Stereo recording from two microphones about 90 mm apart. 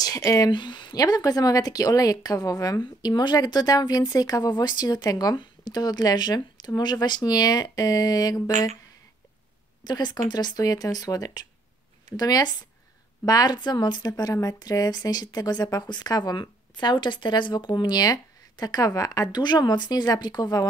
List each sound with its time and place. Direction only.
0.0 s speech: 40° left (ahead or behind)
0.5 s speech: 60° left (ahead or behind)
0.9 s speech: 45° left (ahead or behind)
9.8 s speech: 50° left (ahead or behind)